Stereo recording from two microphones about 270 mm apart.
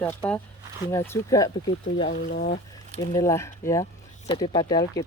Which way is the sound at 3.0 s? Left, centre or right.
Centre.